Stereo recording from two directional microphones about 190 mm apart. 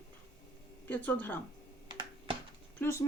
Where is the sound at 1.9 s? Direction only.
25° right (ahead or behind).